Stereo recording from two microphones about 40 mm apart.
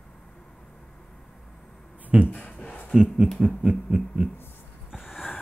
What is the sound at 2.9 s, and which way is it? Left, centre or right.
Speech, right.